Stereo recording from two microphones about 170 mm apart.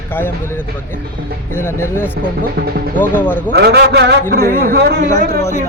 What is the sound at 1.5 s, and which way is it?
Speech, 15° left (ahead or behind).